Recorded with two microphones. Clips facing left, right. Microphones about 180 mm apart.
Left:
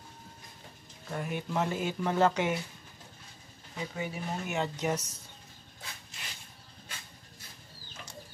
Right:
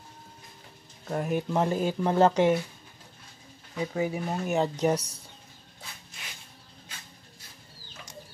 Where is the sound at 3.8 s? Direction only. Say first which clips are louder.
Right 8 dB; 35° right (ahead or behind).